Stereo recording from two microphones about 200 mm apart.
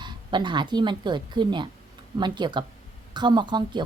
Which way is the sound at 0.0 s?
20° right (ahead or behind).